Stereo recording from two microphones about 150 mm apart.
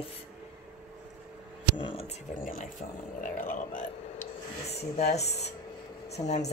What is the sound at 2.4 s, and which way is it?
Speech, 65° left (ahead or behind).